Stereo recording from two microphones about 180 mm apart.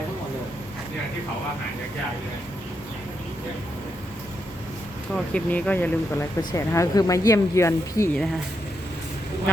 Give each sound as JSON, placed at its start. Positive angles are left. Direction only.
{"t": 5.1, "sound": "speech", "side_deg": 5}